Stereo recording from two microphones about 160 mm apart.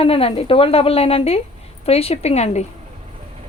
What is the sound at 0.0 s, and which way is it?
A woman's voice, 35° left (ahead or behind).